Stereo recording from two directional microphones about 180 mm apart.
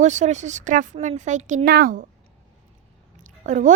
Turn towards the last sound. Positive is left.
turn(degrees=-45)  # may be behind; listen again after turning